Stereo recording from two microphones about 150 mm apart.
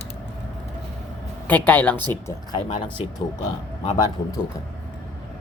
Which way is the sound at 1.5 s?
10° left (ahead or behind).